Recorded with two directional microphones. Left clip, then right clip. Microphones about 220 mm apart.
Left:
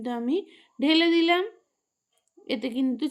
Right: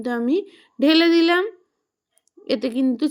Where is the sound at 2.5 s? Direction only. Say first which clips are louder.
Right 6 dB; 30° right (ahead or behind).